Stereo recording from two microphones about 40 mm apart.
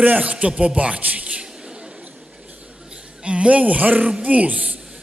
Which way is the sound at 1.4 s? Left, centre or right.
Right.